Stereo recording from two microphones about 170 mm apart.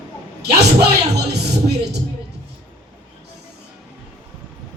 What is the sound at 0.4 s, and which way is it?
Speech, 75° right (ahead or behind).